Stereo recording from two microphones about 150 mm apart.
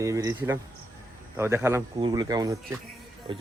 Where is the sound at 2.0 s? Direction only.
30° right (ahead or behind).